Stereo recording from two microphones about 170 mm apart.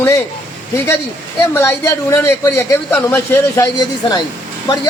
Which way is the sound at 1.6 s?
15° left (ahead or behind).